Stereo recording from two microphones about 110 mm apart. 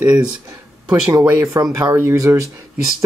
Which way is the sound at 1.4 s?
35° right (ahead or behind).